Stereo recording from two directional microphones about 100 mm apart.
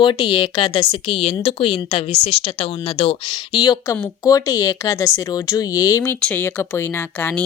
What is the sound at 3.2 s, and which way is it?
Speech, 50° left (ahead or behind).